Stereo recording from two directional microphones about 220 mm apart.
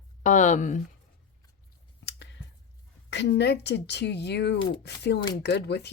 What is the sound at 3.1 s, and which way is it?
Speech, 50° left (ahead or behind).